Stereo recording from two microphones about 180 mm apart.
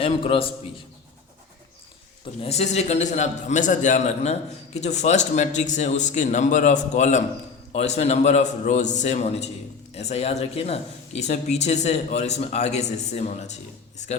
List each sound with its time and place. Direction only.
0.0 s a man's voice: 30° left (ahead or behind)
2.4 s a man's voice: 35° left (ahead or behind)